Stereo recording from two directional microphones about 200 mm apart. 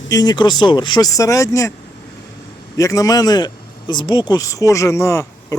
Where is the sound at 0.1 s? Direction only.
20° left (ahead or behind).